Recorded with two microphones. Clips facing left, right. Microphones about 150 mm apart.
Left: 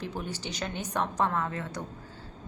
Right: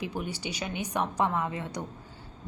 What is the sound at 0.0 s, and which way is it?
A woman's voice, 10° right (ahead or behind).